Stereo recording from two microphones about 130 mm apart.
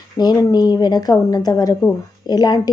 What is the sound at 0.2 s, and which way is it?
A woman's voice, 30° left (ahead or behind).